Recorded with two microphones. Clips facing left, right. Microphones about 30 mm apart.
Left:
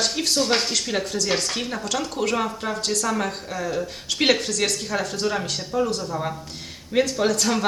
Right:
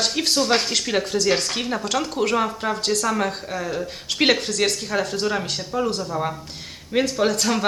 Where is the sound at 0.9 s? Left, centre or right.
Centre.